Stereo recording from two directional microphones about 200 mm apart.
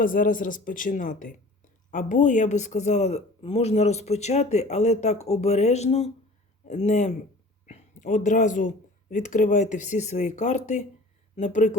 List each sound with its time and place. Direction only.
0.0 s speech: 40° left (ahead or behind)